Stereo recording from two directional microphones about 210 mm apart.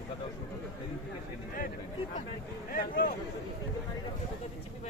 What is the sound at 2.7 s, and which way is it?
Speech, 40° left (ahead or behind).